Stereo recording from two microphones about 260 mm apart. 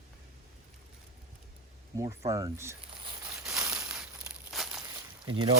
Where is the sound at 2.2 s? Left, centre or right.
Centre.